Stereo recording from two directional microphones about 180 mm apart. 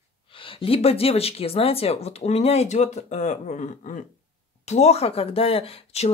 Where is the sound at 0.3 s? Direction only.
30° left (ahead or behind).